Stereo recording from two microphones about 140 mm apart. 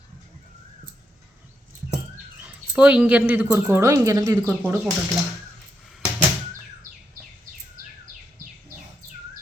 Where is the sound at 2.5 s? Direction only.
10° right (ahead or behind); by 4.5 s 25° right (ahead or behind).